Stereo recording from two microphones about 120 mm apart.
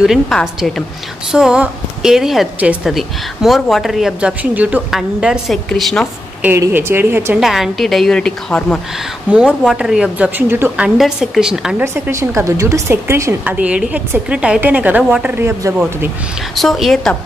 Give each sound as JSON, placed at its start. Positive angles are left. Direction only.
{"t": 0.0, "sound": "speech", "side_deg": 0}
{"t": 6.7, "sound": "a woman's voice", "side_deg": -20}
{"t": 7.3, "sound": "speech", "side_deg": 0}
{"t": 9.3, "sound": "a woman's voice", "side_deg": -10}
{"t": 11.0, "sound": "speech", "side_deg": -5}
{"t": 11.8, "sound": "a woman's voice", "side_deg": -25}
{"t": 16.5, "sound": "speech", "side_deg": 0}